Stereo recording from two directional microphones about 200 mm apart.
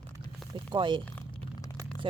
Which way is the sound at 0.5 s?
25° right (ahead or behind).